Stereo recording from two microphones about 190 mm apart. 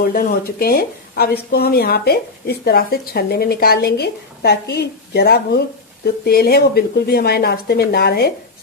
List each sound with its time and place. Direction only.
0.0 s speech: 50° left (ahead or behind)